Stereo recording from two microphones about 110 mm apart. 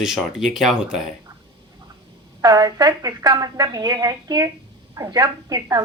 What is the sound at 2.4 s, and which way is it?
A woman's voice, 35° right (ahead or behind).